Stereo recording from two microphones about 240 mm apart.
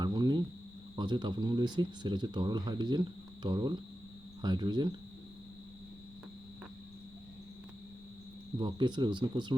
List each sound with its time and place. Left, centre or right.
0.0 s cricket: centre
0.9 s speech: centre
8.5 s speech: centre